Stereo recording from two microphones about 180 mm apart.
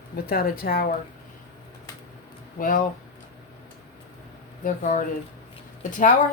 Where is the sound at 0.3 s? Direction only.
55° left (ahead or behind).